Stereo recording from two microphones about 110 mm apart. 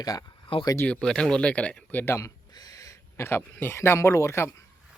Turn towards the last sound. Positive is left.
turn(degrees=25)  # may be behind; listen again after turning